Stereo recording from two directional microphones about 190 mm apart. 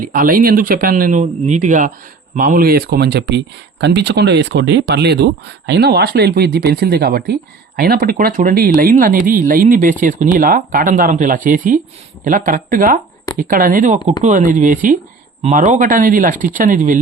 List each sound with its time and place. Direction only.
0.0 s speech: 45° right (ahead or behind)